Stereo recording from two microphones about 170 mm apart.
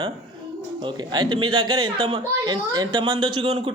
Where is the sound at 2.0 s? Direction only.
35° right (ahead or behind).